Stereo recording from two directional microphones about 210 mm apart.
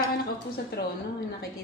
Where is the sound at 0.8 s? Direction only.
50° left (ahead or behind).